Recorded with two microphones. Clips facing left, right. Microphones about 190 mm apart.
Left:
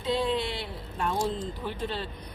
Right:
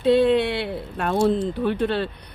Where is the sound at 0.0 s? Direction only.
65° right (ahead or behind).